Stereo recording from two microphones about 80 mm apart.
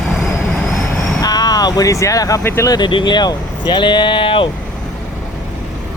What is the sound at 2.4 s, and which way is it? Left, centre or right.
Speech, left.